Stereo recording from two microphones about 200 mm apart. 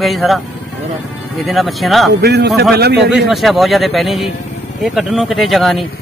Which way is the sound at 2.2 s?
55° right (ahead or behind).